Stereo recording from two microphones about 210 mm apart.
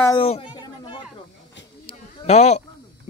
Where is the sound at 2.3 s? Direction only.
30° left (ahead or behind).